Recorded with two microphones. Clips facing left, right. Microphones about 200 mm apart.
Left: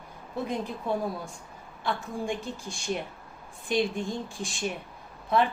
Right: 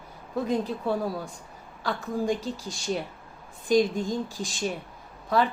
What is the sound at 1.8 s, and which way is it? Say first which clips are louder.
Speech: right 4 dB; 40° right (ahead or behind).